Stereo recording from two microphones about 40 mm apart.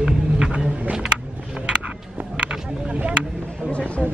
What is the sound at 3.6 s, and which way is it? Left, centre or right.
Speech, left.